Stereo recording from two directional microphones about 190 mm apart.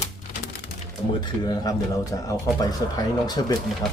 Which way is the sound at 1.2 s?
20° left (ahead or behind).